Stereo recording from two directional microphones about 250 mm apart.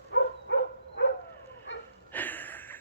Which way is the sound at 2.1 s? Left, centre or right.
Centre.